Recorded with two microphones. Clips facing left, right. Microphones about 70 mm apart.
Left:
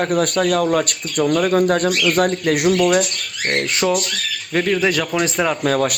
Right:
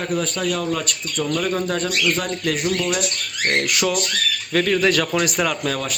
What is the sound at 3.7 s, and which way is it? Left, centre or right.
Speech, left.